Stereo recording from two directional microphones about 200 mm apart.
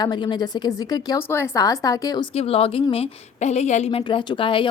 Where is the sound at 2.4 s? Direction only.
30° left (ahead or behind).